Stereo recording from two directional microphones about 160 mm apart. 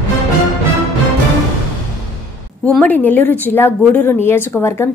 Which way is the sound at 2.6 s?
10° left (ahead or behind).